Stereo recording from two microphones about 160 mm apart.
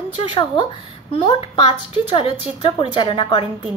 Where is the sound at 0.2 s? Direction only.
30° left (ahead or behind).